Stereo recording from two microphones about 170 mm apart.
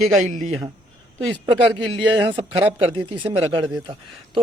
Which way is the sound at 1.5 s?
30° right (ahead or behind).